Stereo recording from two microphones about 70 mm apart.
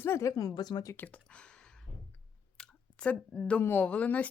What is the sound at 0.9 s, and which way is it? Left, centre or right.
Speech, left.